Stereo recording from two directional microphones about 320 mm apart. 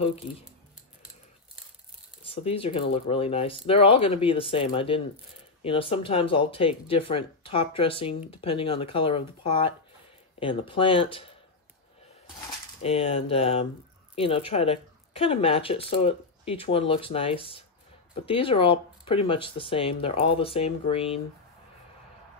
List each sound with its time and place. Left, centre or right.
2.2 s speech: centre
12.4 s speech: centre